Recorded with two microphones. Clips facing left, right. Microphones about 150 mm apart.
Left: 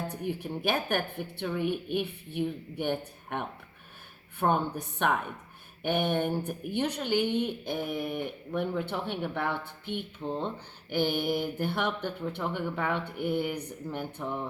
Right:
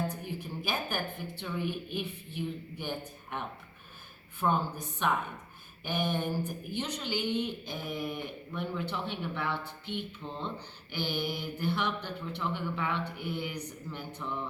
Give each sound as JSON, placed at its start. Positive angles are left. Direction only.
{"t": 0.1, "sound": "a woman's voice", "side_deg": 60}